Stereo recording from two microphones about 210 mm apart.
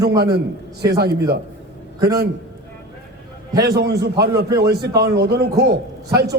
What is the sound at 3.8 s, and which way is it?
Speech, 50° right (ahead or behind).